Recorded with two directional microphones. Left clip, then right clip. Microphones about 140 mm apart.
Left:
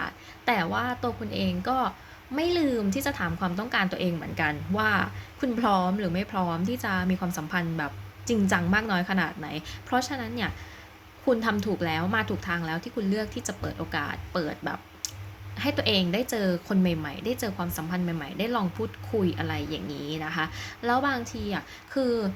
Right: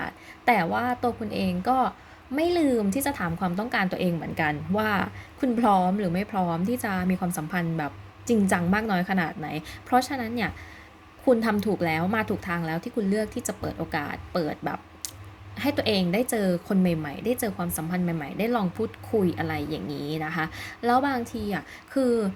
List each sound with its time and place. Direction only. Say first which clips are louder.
0.0 s a woman's voice: right 4 dB; 20° right (ahead or behind)